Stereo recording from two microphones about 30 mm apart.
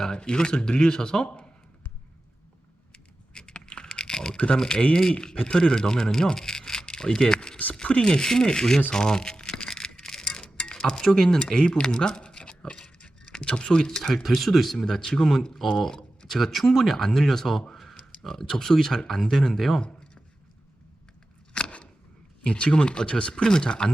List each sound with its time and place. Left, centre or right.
0.2 s speech: left
3.3 s a sound: left
4.4 s speech: left
5.1 s speech: left
8.0 s speech: left
9.5 s a sound: left
11.0 s speech: centre; by 12.8 s left
12.8 s keys jangling: left
14.1 s speech: centre
14.8 s speech: centre
15.9 s a sound: left
16.3 s speech: centre
21.5 s scissors: left
22.4 s speech: left